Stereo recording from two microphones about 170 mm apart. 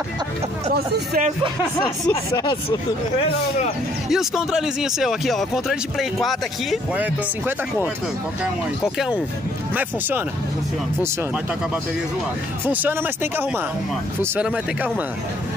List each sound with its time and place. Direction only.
2.0 s speech: 25° left (ahead or behind)
4.1 s speech: centre (ahead or behind)
8.9 s speech: 5° right (ahead or behind)
12.6 s speech: 10° right (ahead or behind)